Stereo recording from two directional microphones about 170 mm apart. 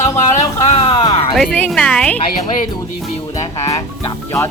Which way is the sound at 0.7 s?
30° left (ahead or behind).